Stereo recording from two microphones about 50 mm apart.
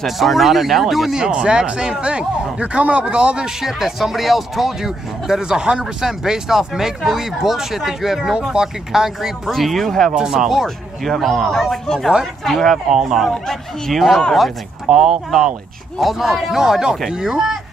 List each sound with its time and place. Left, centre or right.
0.0 s speech: centre
1.1 s speech: centre
3.6 s speech: centre
9.5 s speech: centre
10.1 s speech: centre
13.3 s speech: centre
14.9 s speech: centre